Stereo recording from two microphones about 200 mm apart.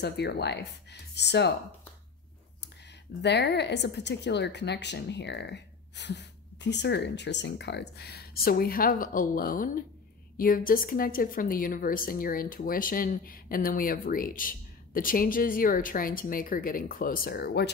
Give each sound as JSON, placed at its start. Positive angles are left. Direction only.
{"t": 0.0, "sound": "speech", "side_deg": 55}
{"t": 3.2, "sound": "a woman's voice", "side_deg": 55}